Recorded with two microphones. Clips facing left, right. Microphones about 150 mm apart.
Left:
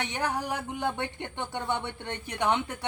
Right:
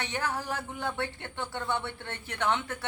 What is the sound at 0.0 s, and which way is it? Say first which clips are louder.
Speech: left 2 dB; 15° left (ahead or behind).